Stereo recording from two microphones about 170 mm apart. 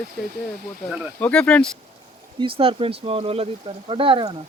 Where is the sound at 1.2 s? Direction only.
5° left (ahead or behind).